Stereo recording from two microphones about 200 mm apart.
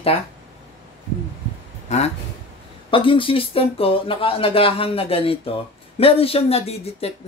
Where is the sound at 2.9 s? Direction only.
25° left (ahead or behind).